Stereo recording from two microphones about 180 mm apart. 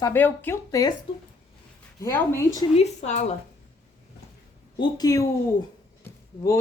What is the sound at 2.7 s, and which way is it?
Speech, 40° left (ahead or behind).